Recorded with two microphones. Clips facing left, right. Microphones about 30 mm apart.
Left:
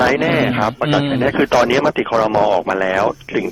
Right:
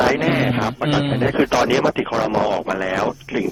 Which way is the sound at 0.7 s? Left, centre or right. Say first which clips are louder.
Left 3 dB; centre.